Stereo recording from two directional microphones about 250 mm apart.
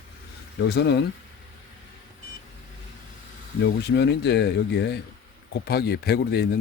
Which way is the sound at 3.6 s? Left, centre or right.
Left.